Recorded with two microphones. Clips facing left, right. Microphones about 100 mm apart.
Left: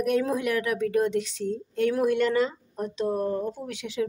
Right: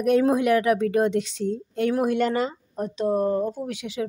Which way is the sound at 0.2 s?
80° right.